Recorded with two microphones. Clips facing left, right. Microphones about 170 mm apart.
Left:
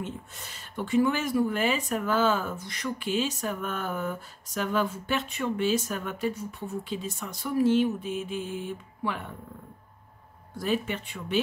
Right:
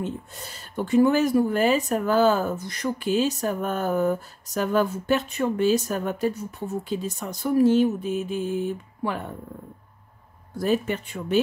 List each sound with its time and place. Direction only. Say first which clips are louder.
0.0 s speech: right 6 dB; 35° right (ahead or behind)
10.6 s speech: right 5 dB; 45° right (ahead or behind)